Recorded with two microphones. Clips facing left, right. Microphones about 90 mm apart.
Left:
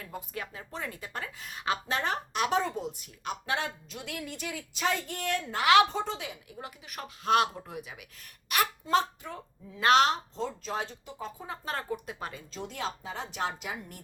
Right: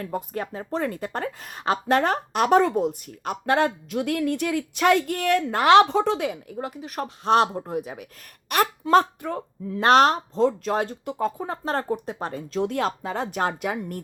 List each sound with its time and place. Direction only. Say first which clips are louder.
0.0 s a woman's voice: right 10 dB; 50° right (ahead or behind); by 5.5 s 65° right (ahead or behind)
5.5 s speech: right 6 dB; 35° right (ahead or behind)
5.9 s a woman's voice: right 11 dB; 75° right (ahead or behind); by 9.8 s 55° right (ahead or behind)
9.8 s a woman's voice: right 6 dB; 45° right (ahead or behind)
12.5 s speech: right 12 dB; 60° right (ahead or behind)